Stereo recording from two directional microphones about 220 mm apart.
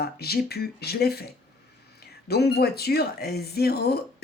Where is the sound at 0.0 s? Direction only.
45° left (ahead or behind).